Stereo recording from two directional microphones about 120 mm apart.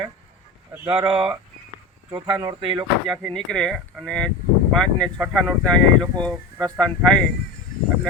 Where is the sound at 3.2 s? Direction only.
5° left (ahead or behind).